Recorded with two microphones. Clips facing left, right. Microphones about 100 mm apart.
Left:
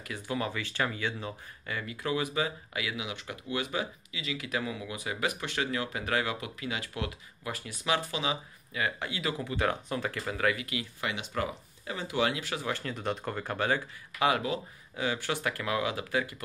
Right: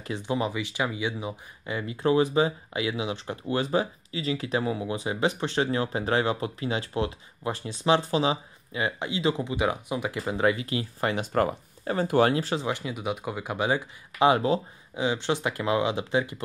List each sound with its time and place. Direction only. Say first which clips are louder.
0.0 s speech: right 5 dB; 25° right (ahead or behind)
12.5 s speech: right 5 dB; 15° right (ahead or behind)
14.3 s speech: right 7 dB; 30° right (ahead or behind)